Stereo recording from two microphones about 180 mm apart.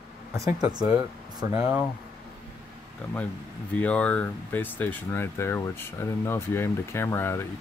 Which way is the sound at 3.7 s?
5° left (ahead or behind).